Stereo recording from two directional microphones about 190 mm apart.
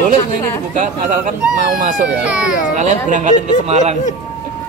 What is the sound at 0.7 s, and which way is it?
Speech, 40° right (ahead or behind).